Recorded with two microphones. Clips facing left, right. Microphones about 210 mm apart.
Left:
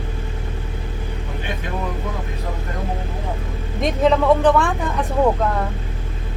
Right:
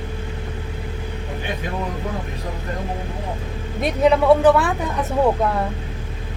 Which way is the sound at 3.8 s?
5° right (ahead or behind).